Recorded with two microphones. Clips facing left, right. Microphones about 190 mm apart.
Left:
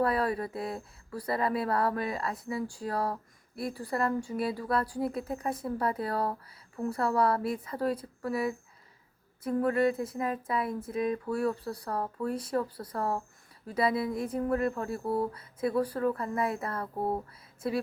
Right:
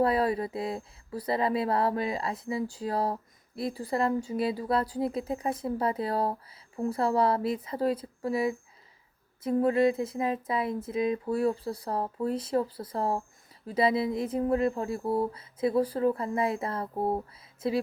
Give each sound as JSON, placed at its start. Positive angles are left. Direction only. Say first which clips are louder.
{"t": 0.0, "sound": "speech", "louder": "right 3 dB", "side_deg": -20}